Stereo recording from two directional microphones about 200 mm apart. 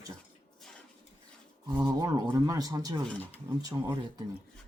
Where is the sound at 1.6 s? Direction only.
20° right (ahead or behind).